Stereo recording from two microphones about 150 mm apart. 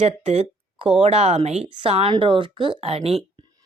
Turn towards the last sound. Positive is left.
turn(degrees=-40)  # may be behind; listen again after turning